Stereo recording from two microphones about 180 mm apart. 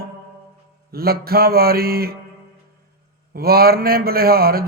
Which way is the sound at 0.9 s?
55° right (ahead or behind).